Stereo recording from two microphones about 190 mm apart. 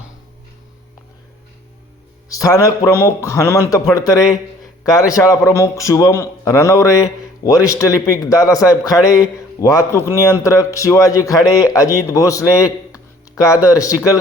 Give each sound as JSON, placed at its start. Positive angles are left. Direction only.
{"t": 2.3, "sound": "a man's voice", "side_deg": 15}
{"t": 12.9, "sound": "a sound", "side_deg": 15}
{"t": 13.7, "sound": "a man's voice", "side_deg": 15}